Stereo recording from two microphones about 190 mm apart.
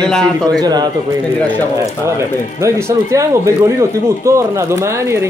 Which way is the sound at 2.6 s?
15° right (ahead or behind).